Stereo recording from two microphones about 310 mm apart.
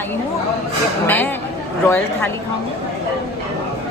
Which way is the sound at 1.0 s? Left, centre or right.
Centre.